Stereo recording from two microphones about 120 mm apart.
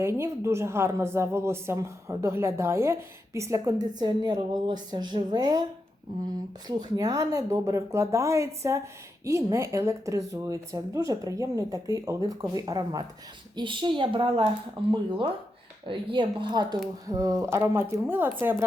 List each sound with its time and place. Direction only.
0.0 s a woman's voice: 20° right (ahead or behind); by 14.4 s 45° right (ahead or behind)
15.9 s a woman's voice: 45° right (ahead or behind); by 18.3 s 15° right (ahead or behind)